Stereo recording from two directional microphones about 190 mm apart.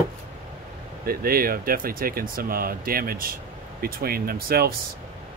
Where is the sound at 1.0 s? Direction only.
50° right (ahead or behind).